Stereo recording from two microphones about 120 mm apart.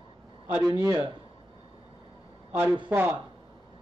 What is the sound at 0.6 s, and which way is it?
Speech, 30° right (ahead or behind).